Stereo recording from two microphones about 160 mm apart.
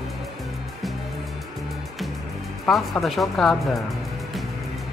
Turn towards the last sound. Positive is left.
turn(degrees=0)  # may be behind; listen again after turning